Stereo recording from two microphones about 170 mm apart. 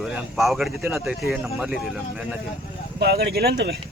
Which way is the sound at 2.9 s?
70° right (ahead or behind).